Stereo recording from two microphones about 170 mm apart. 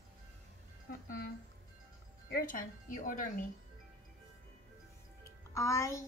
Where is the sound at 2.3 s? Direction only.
55° left (ahead or behind).